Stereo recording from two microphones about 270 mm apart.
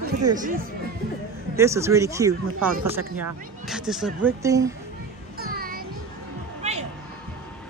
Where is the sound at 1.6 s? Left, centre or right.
Centre.